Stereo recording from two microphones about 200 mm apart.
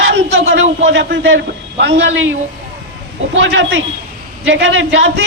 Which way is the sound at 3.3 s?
65° right (ahead or behind).